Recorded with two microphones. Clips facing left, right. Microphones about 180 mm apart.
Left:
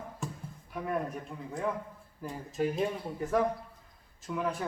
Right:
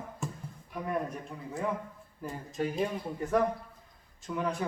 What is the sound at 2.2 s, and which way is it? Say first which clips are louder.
Speech: left 1 dB; centre (ahead or behind).